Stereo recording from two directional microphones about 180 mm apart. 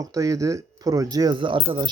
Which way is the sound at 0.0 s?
20° right (ahead or behind).